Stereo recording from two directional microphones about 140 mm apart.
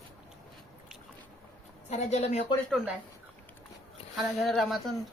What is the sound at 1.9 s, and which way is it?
Speech, 55° left (ahead or behind).